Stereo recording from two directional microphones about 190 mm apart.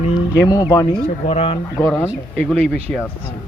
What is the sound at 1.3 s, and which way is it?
Speech, 30° left (ahead or behind).